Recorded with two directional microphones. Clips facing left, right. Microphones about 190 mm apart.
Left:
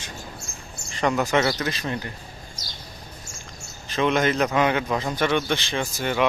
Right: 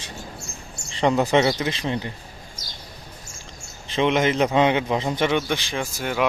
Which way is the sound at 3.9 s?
20° right (ahead or behind).